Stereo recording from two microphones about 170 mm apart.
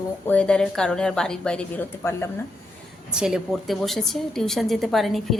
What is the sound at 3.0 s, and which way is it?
A woman's voice, 5° right (ahead or behind).